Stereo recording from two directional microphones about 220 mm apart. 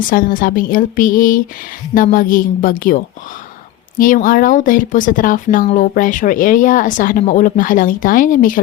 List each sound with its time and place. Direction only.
0.1 s speech: 40° left (ahead or behind)